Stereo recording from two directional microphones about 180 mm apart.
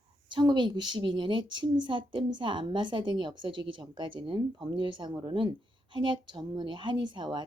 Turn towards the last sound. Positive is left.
turn(degrees=-25)  # may be behind; listen again after turning